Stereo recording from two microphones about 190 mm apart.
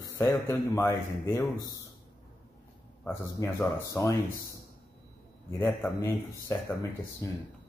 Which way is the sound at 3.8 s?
15° left (ahead or behind).